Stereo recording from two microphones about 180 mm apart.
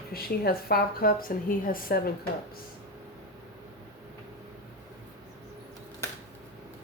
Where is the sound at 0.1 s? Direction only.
55° left (ahead or behind).